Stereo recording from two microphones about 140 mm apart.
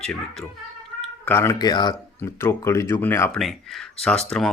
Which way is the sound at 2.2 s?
15° left (ahead or behind).